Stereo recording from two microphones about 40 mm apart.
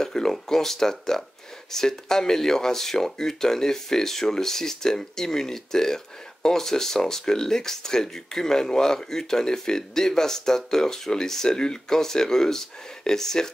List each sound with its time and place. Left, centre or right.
0.0 s speech: centre